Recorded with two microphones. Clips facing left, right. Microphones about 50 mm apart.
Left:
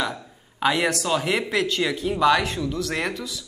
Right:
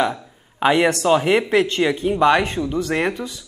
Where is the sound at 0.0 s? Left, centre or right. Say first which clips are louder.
Right 7 dB; right.